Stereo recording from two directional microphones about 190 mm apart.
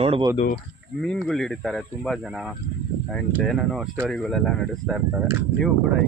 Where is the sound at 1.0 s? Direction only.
Centre (ahead or behind).